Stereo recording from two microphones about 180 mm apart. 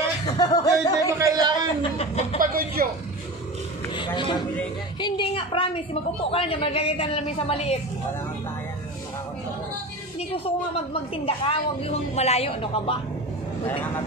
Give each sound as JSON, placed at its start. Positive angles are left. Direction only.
{"t": 0.2, "sound": "speech", "side_deg": 20}
{"t": 1.1, "sound": "a sound", "side_deg": -20}
{"t": 1.8, "sound": "chuckle", "side_deg": 35}
{"t": 2.3, "sound": "speech", "side_deg": -50}
{"t": 3.9, "sound": "a sound", "side_deg": 25}
{"t": 5.0, "sound": "a woman's voice", "side_deg": 25}
{"t": 10.3, "sound": "a woman's voice", "side_deg": 30}